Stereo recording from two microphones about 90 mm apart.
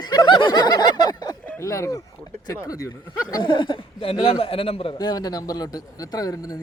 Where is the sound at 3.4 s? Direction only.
65° left (ahead or behind); by 4.9 s 90° left.